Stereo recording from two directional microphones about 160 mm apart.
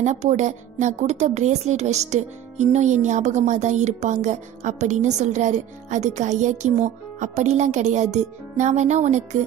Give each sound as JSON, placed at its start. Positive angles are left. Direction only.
{"t": 0.0, "sound": "a woman's voice", "side_deg": -45}